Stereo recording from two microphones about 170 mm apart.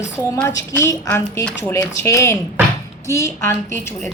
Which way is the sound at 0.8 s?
15° left (ahead or behind).